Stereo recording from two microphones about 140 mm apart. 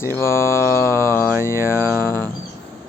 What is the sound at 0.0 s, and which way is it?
Mantra, 20° left (ahead or behind).